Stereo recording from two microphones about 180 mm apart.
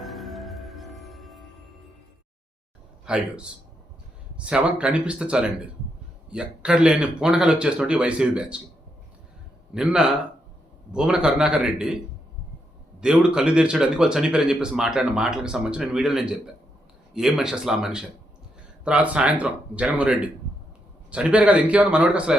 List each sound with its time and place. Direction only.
0.0 s music: centre (ahead or behind)
3.1 s speech: 5° right (ahead or behind)
9.7 s speech: 5° right (ahead or behind)
13.0 s speech: 5° right (ahead or behind)